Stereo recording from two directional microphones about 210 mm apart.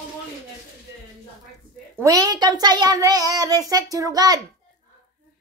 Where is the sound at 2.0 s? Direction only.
15° right (ahead or behind).